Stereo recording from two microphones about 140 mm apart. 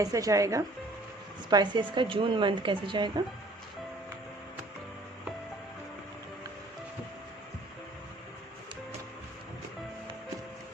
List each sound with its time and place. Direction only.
0.0 s a woman's voice: 25° right (ahead or behind)